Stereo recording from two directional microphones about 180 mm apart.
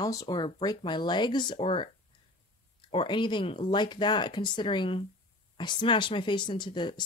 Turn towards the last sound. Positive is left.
turn(degrees=25)  # may be behind; listen again after turning